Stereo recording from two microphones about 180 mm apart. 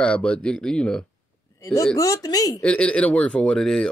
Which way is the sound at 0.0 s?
5° left (ahead or behind).